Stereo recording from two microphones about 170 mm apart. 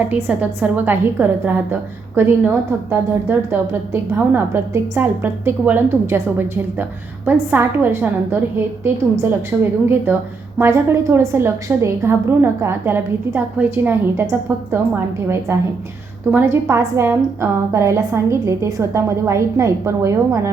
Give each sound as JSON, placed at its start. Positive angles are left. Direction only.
{"t": 0.1, "sound": "a woman's voice", "side_deg": -10}